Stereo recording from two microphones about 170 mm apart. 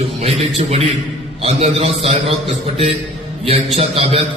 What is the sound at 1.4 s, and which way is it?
A man's voice, 40° right (ahead or behind).